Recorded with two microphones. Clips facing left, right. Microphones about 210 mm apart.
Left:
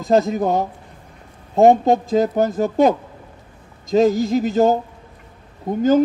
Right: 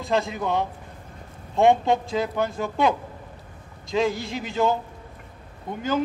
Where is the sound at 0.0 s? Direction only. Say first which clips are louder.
Left 8 dB; 40° left (ahead or behind).